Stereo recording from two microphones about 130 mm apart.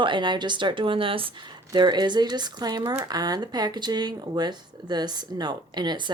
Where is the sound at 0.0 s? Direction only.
35° right (ahead or behind).